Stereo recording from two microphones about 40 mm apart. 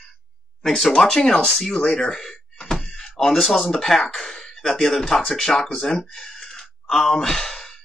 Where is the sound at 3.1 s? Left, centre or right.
Centre.